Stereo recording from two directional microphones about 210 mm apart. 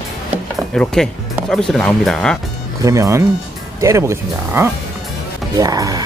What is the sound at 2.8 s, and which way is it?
Speech, 15° right (ahead or behind).